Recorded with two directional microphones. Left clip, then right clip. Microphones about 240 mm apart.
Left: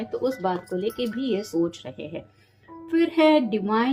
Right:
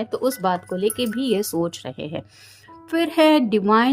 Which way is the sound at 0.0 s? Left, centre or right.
Right.